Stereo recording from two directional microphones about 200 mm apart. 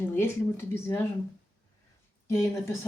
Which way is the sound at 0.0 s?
10° left (ahead or behind).